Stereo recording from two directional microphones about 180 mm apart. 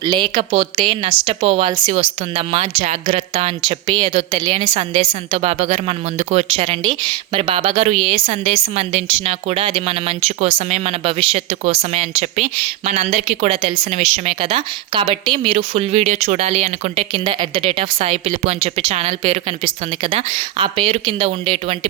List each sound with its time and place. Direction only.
0.0 s speech: 25° right (ahead or behind)
4.6 s a woman's voice: 45° right (ahead or behind)
4.9 s speech: 30° right (ahead or behind)